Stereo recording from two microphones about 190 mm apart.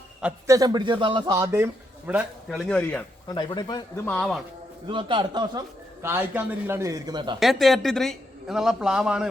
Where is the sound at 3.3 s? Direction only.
25° left (ahead or behind).